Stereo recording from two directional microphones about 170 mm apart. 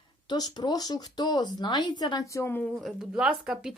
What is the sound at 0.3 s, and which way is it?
A woman's voice, 25° left (ahead or behind).